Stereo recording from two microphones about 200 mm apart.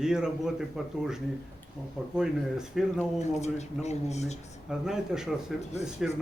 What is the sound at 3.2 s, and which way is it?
Speech, 35° left (ahead or behind).